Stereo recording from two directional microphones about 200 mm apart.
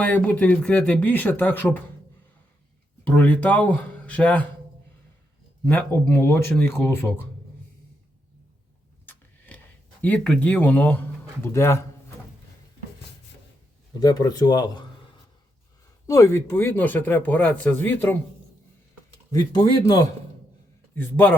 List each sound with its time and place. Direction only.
0.0 s speech: 5° left (ahead or behind)
3.2 s speech: 5° left (ahead or behind)
5.6 s speech: 10° left (ahead or behind)
10.0 s speech: 5° left (ahead or behind)
14.0 s speech: 20° left (ahead or behind)
16.0 s speech: 15° left (ahead or behind)
19.5 s speech: 20° left (ahead or behind)